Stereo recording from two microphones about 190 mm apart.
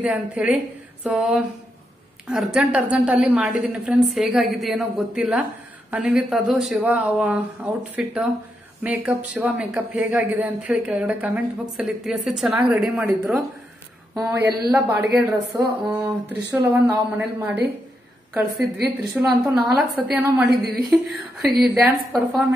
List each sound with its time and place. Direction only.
0.0 s a woman's voice: 5° right (ahead or behind)
19.2 s a woman's voice: 5° right (ahead or behind)